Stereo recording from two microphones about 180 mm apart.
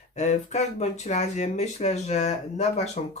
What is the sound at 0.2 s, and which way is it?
Speech, 40° left (ahead or behind).